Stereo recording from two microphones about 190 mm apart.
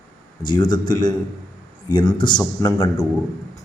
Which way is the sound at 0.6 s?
25° left (ahead or behind).